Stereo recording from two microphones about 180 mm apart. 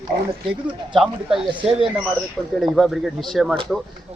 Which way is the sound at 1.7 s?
5° right (ahead or behind).